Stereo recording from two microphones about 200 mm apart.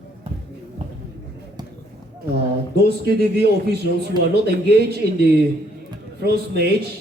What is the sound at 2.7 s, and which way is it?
A man's voice, 55° right (ahead or behind).